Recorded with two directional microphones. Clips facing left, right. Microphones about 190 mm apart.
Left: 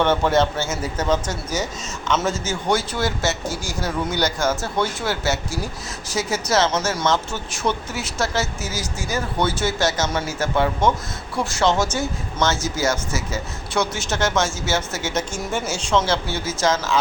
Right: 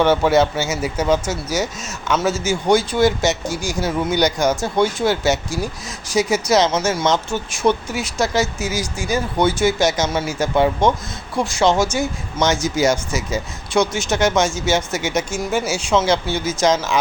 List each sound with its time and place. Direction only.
0.0 s speech: 10° right (ahead or behind)